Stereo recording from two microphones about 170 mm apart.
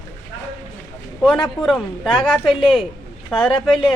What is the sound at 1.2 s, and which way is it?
Speech, centre (ahead or behind).